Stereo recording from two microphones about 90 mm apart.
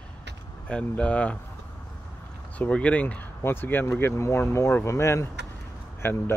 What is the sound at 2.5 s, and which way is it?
Speech, 15° left (ahead or behind).